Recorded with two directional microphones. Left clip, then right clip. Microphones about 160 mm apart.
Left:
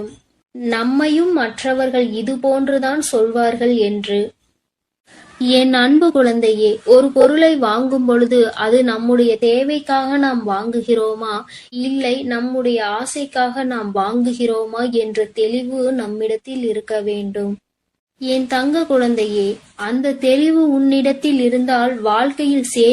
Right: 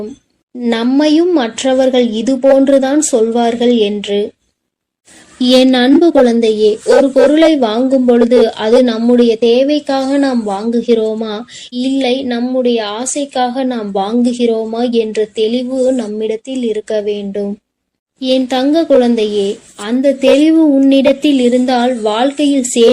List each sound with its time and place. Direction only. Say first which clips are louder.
0.6 s speech: right 5 dB; 25° right (ahead or behind)
5.4 s speech: right 4 dB; 20° right (ahead or behind)